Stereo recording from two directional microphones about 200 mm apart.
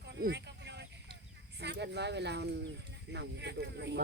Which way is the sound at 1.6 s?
60° right (ahead or behind).